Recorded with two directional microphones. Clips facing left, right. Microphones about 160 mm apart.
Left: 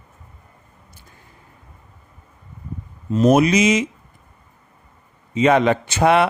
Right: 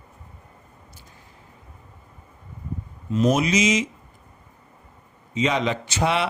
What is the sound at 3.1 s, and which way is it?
Speech, 40° left (ahead or behind).